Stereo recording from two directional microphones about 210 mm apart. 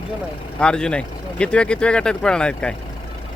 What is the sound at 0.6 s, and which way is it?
Speech, 5° left (ahead or behind).